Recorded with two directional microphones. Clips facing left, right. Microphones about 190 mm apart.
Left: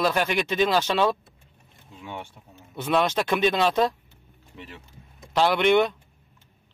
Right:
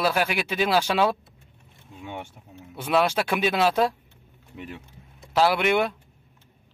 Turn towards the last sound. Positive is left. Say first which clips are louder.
# left 3 dB
turn(degrees=-5)  # may be behind; listen again after turning